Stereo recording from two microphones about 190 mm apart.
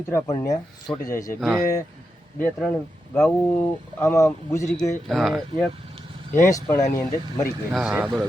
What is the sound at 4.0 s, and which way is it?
Speech, 15° left (ahead or behind).